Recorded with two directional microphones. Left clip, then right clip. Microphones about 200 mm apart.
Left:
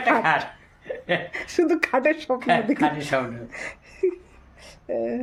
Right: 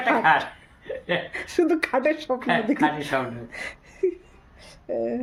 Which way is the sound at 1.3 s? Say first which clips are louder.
Right 1 dB; centre (ahead or behind).